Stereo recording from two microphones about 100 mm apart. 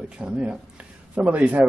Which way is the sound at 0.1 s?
10° right (ahead or behind).